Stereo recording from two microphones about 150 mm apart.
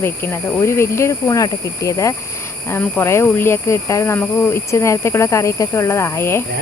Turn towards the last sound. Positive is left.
turn(degrees=15)  # may be behind; listen again after turning